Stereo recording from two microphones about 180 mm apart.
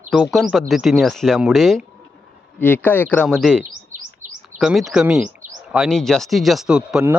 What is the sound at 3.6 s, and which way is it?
Chirp, 45° right (ahead or behind).